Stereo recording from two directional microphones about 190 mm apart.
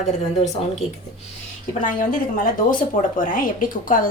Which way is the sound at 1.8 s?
45° left (ahead or behind).